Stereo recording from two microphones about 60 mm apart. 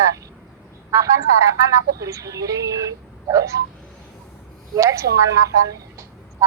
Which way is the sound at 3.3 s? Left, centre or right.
Right.